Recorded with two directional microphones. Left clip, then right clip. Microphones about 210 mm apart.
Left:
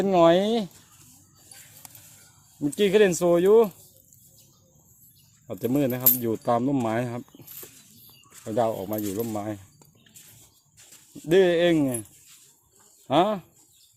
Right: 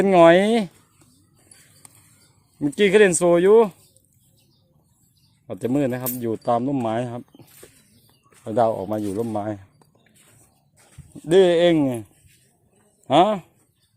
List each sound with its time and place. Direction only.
0.0 s speech: 25° right (ahead or behind)
2.6 s speech: 20° right (ahead or behind)
5.5 s speech: 15° right (ahead or behind)
8.4 s speech: 20° right (ahead or behind)
11.3 s speech: 20° right (ahead or behind)
13.1 s speech: 20° right (ahead or behind)